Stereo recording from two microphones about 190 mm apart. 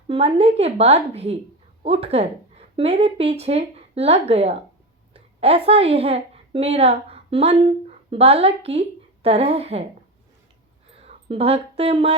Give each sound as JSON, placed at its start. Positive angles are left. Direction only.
{"t": 0.1, "sound": "a woman's voice", "side_deg": -30}
{"t": 11.0, "sound": "speech", "side_deg": -35}